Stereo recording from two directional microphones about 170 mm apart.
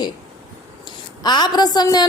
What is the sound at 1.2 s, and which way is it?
Speech, 25° left (ahead or behind).